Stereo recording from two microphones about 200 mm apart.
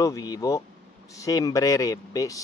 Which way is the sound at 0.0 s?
20° left (ahead or behind).